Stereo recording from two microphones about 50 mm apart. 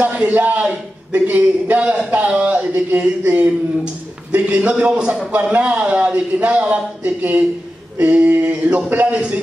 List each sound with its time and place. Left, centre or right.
0.0 s a man's voice: right